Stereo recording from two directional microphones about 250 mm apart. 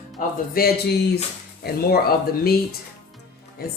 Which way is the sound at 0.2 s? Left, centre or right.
Left.